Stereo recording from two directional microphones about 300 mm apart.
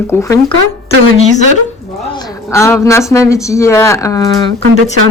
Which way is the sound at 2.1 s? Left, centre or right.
Centre.